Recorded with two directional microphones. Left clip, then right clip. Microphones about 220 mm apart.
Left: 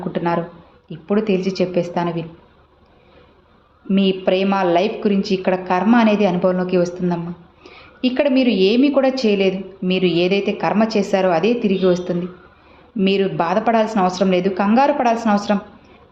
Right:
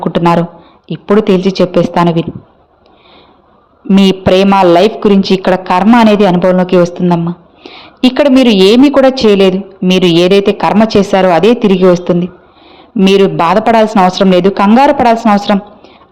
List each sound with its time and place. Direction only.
0.0 s a woman's voice: 35° right (ahead or behind)
3.8 s a woman's voice: 40° right (ahead or behind)